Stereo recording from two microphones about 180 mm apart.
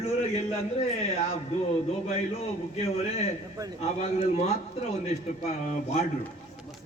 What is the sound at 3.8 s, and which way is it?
A man's voice, 35° left (ahead or behind).